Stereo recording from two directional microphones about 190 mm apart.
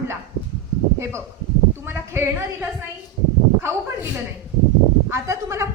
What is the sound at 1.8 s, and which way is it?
Speech, 10° right (ahead or behind).